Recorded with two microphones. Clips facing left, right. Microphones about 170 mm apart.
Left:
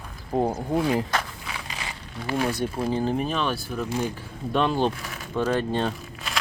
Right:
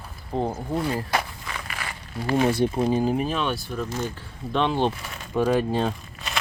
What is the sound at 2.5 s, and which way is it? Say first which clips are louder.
Speech: right 5 dB; 25° right (ahead or behind).